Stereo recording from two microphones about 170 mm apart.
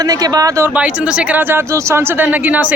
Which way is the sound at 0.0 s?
20° right (ahead or behind).